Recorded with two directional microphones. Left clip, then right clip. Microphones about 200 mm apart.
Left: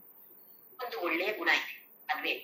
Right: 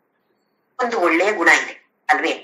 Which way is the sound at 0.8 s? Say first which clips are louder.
Right 16 dB; 60° right (ahead or behind).